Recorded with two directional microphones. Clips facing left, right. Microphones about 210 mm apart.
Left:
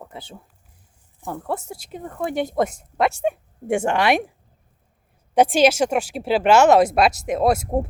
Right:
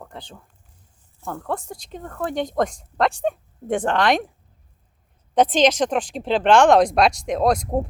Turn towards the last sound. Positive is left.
turn(degrees=5)  # may be behind; listen again after turning